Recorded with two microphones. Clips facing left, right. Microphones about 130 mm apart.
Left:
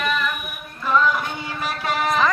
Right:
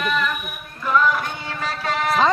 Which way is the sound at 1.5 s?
15° left (ahead or behind).